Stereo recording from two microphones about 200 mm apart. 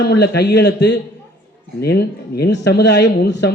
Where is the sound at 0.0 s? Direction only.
55° left (ahead or behind).